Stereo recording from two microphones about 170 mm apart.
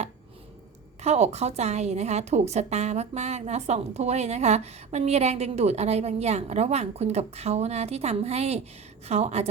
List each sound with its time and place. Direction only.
1.0 s a woman's voice: 40° right (ahead or behind)